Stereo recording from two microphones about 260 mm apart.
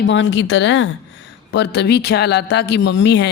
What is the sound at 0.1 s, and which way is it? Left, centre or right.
A man's voice, left.